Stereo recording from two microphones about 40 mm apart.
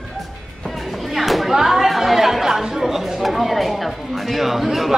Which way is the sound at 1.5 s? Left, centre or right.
Centre.